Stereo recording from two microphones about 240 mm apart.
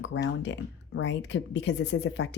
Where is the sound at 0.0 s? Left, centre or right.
Left.